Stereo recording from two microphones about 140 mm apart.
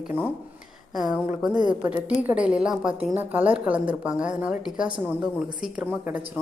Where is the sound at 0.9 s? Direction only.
5° right (ahead or behind).